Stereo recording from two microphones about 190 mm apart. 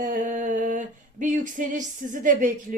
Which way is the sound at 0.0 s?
45° right (ahead or behind).